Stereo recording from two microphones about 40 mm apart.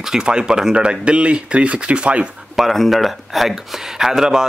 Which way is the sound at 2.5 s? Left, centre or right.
Centre.